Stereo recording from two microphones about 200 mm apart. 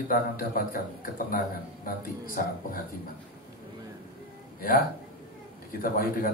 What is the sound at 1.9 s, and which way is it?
Speech, 45° left (ahead or behind).